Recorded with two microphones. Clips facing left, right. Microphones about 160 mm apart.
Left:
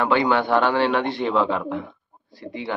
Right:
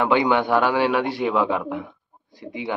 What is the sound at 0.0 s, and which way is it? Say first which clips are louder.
Speech: right 1 dB; 15° right (ahead or behind).